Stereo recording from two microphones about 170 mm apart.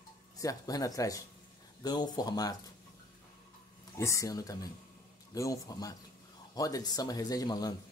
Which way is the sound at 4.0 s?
15° left (ahead or behind).